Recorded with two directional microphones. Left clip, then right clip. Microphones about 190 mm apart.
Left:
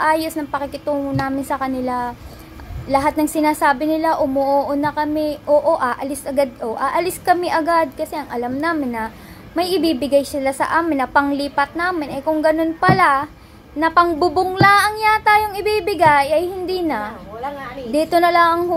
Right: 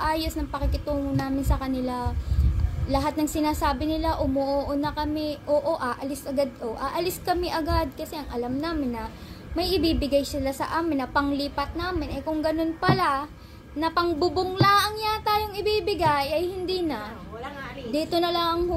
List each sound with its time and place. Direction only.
0.4 s a woman's voice: 5° left (ahead or behind)
5.1 s speech: 30° left (ahead or behind)
5.5 s a woman's voice: 5° left (ahead or behind)
10.1 s a woman's voice: 5° left (ahead or behind)
15.5 s speech: 30° left (ahead or behind)
15.8 s a woman's voice: 5° left (ahead or behind)
18.1 s a woman's voice: 5° left (ahead or behind)